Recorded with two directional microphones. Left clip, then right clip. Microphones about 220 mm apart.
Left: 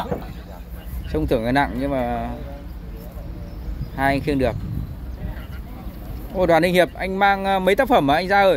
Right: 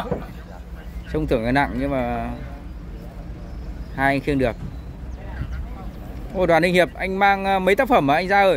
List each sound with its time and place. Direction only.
1.1 s speech: 5° right (ahead or behind)
3.9 s speech: 5° right (ahead or behind)
6.3 s speech: centre (ahead or behind)